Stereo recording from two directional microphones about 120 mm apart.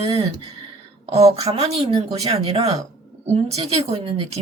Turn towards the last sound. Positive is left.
turn(degrees=-60)  # may be behind; listen again after turning